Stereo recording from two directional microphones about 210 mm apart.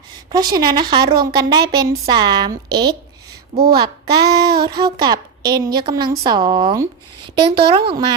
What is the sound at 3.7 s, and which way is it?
Child singing, 20° right (ahead or behind).